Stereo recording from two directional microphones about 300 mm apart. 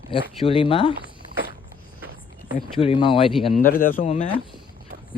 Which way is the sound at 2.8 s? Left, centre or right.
Centre.